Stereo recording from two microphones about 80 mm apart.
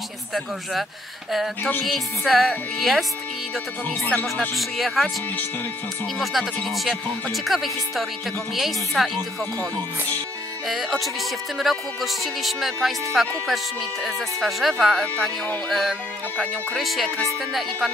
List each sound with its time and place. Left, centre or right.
1.3 s speech: centre
4.0 s speech: centre
4.6 s speech: centre
6.1 s speech: centre
10.7 s speech: centre